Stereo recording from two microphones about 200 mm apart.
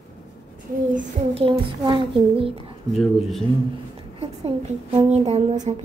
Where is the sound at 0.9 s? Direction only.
30° right (ahead or behind).